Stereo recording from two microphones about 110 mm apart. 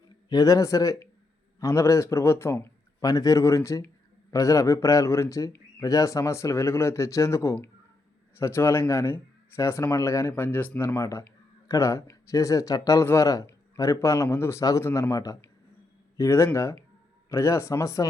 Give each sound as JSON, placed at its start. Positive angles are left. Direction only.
{"t": 0.3, "sound": "a man's voice", "side_deg": 30}